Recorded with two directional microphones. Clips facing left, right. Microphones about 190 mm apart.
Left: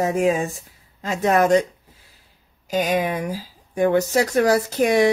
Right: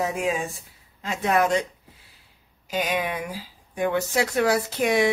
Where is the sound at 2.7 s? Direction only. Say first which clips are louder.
Left 5 dB; 45° left (ahead or behind).